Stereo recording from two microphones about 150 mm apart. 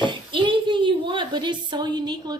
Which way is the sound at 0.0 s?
30° right (ahead or behind).